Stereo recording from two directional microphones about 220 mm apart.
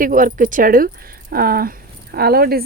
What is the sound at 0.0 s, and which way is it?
Speech, 40° right (ahead or behind).